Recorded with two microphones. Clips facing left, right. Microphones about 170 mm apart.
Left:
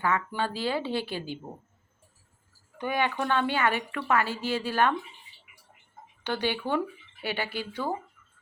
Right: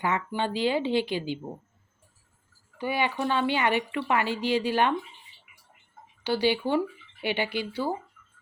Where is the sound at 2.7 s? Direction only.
10° right (ahead or behind).